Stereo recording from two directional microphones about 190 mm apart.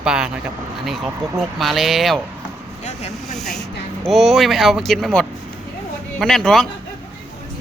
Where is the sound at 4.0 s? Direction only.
Centre (ahead or behind).